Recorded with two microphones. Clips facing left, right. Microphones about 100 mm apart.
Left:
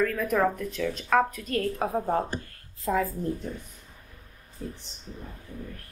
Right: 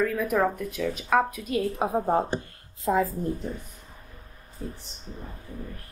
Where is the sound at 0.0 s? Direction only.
10° right (ahead or behind); by 3.5 s 25° right (ahead or behind).